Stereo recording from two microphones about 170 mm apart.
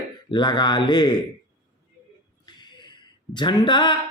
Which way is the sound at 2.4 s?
25° left (ahead or behind).